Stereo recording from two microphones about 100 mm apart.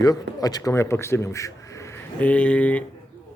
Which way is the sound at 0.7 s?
25° left (ahead or behind).